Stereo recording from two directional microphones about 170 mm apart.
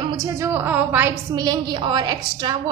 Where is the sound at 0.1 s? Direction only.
20° right (ahead or behind).